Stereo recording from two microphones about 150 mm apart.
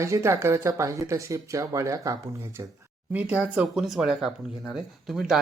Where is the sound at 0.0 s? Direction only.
20° right (ahead or behind).